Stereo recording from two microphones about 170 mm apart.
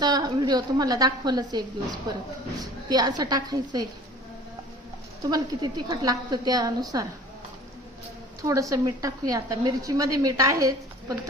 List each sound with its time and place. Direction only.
0.0 s a woman's voice: 25° right (ahead or behind)
5.3 s a woman's voice: 25° right (ahead or behind)
8.4 s a woman's voice: 20° right (ahead or behind)